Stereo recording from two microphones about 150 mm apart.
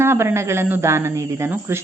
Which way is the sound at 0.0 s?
15° right (ahead or behind).